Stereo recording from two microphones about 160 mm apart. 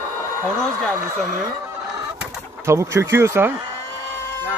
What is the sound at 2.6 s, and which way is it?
Speech, 15° right (ahead or behind).